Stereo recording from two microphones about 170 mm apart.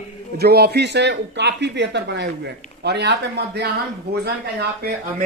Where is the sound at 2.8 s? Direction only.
80° right.